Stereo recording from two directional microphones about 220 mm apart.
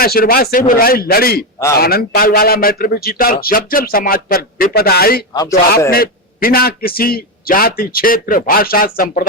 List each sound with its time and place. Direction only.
0.0 s speech: 40° left (ahead or behind)
5.3 s speech: 15° left (ahead or behind)
5.9 s a man's voice: 40° left (ahead or behind)